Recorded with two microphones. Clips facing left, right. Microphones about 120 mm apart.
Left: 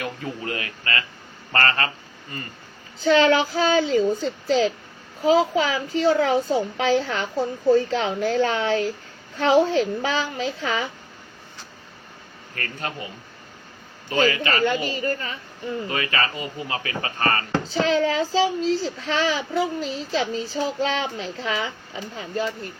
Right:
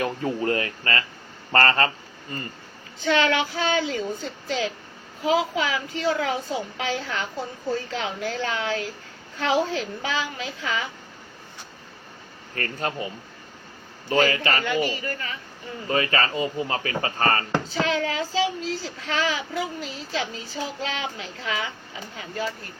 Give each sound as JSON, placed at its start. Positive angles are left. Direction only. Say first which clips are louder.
{"t": 0.0, "sound": "speech", "louder": "right 5 dB", "side_deg": -35}
{"t": 3.0, "sound": "a child's voice", "louder": "left 5 dB", "side_deg": 30}
{"t": 12.5, "sound": "speech", "louder": "right 3 dB", "side_deg": -35}
{"t": 14.1, "sound": "speech", "louder": "even", "side_deg": -35}
{"t": 14.6, "sound": "a child's voice", "louder": "left 3 dB", "side_deg": 30}
{"t": 15.9, "sound": "speech", "louder": "right 6 dB", "side_deg": -35}
{"t": 17.7, "sound": "a child's voice", "louder": "left 6 dB", "side_deg": 30}